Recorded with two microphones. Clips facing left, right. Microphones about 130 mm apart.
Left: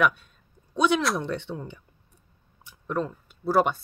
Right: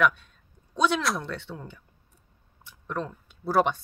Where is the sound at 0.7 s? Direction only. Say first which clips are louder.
Left 2 dB; 15° left (ahead or behind).